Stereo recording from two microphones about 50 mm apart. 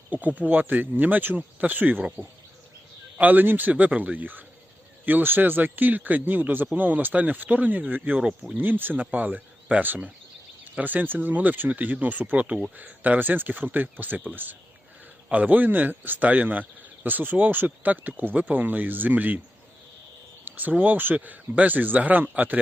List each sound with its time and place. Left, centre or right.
0.1 s speech: right
3.2 s speech: right
20.4 s speech: right